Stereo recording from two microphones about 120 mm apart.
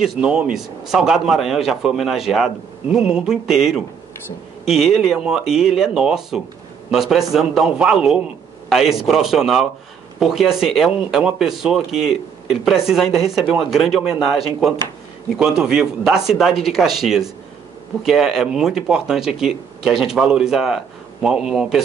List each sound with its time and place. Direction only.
0.0 s speech: 5° right (ahead or behind)